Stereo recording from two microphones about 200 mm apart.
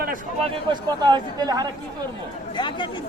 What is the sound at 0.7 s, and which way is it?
Speech, 20° right (ahead or behind).